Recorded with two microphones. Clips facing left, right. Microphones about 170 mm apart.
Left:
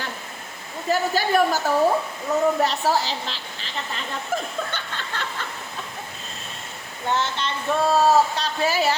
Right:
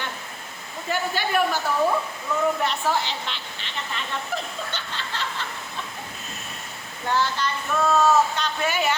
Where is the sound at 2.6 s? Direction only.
35° left (ahead or behind).